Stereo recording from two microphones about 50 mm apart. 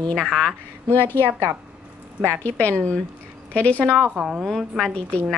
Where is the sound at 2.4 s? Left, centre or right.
Left.